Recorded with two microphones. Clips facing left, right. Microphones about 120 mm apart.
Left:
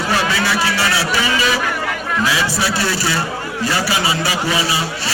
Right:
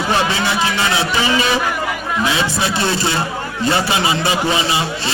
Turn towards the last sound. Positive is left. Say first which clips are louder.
# right 1 dB
turn(degrees=-25)  # may be behind; listen again after turning